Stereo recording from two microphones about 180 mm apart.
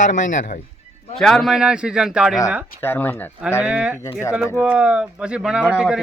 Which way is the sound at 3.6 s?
5° right (ahead or behind).